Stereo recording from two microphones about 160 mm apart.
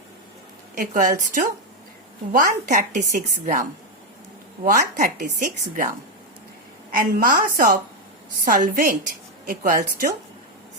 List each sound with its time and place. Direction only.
0.8 s a woman's voice: 50° right (ahead or behind)
2.3 s a woman's voice: 55° right (ahead or behind)
6.9 s a woman's voice: 60° right (ahead or behind)